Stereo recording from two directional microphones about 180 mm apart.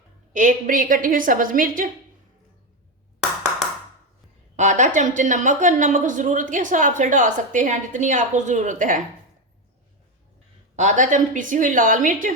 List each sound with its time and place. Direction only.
0.3 s speech: 45° right (ahead or behind)
4.5 s speech: 40° right (ahead or behind)
10.8 s speech: 45° right (ahead or behind)